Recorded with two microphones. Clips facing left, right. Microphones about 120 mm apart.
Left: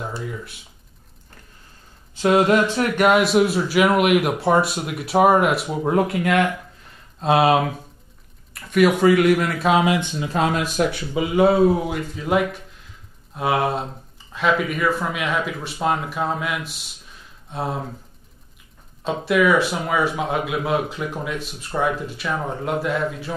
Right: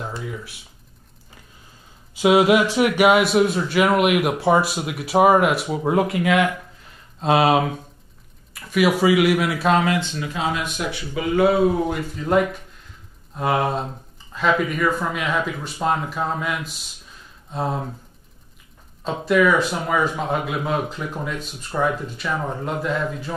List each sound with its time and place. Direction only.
0.0 s speech: centre (ahead or behind)
2.1 s speech: 10° right (ahead or behind)
9.8 s speech: 15° left (ahead or behind)
10.3 s speech: 50° left (ahead or behind)
11.1 s speech: 20° left (ahead or behind)
11.9 s speech: centre (ahead or behind)
19.0 s speech: 5° left (ahead or behind)